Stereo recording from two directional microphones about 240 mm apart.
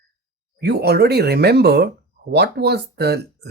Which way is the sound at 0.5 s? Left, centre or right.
Right.